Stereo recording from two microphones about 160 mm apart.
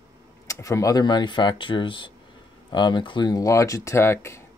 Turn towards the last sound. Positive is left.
turn(degrees=15)  # may be behind; listen again after turning